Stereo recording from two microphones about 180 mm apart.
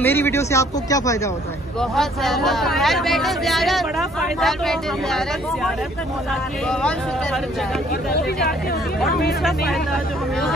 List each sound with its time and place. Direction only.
0.0 s speech: 10° left (ahead or behind)
1.8 s speech: centre (ahead or behind)
8.1 s speech: 60° left (ahead or behind)